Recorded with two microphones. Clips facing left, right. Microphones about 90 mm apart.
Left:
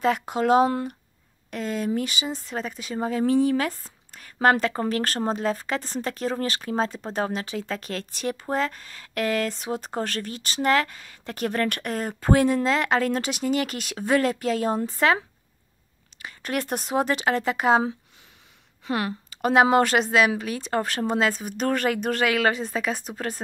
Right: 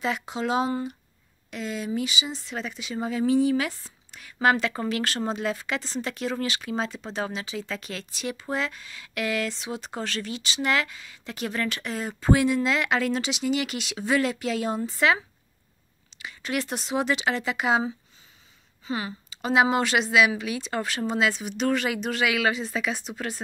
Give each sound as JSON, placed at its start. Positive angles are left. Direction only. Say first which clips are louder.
{"t": 0.0, "sound": "speech", "louder": "left 5 dB", "side_deg": 45}
{"t": 18.9, "sound": "speech", "louder": "left 4 dB", "side_deg": 70}